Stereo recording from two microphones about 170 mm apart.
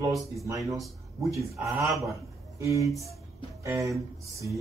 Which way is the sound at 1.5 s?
20° right (ahead or behind).